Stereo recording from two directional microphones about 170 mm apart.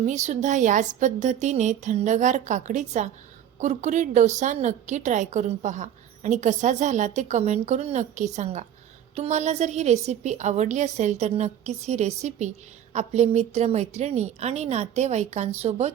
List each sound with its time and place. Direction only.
0.0 s a woman's voice: 45° right (ahead or behind)